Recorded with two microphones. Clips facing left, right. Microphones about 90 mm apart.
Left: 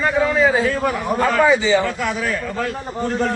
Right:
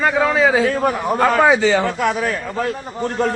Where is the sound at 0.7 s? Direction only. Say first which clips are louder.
Right 2 dB; 45° right (ahead or behind).